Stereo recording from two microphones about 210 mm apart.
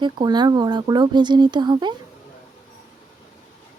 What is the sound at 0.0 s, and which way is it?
Speech, 20° right (ahead or behind).